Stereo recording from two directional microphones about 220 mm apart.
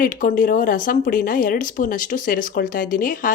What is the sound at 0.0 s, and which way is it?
Speech, 40° left (ahead or behind).